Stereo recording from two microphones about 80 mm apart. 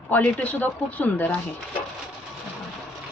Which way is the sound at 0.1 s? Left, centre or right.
Left.